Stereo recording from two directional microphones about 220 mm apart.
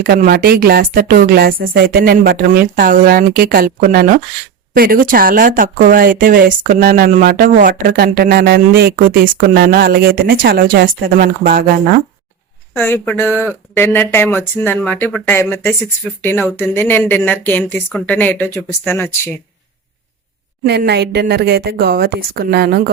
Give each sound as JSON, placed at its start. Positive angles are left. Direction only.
{"t": 0.0, "sound": "speech", "side_deg": -45}
{"t": 12.7, "sound": "speech", "side_deg": 10}
{"t": 20.7, "sound": "speech", "side_deg": -50}